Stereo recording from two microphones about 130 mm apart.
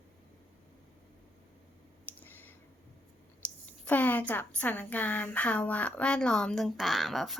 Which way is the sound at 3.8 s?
10° left (ahead or behind).